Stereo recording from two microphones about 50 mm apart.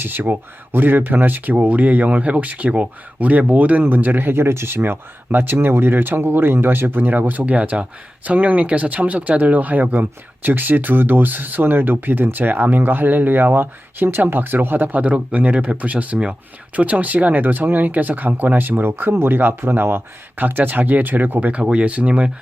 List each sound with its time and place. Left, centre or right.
0.0 s speech: right
21.6 s speech: right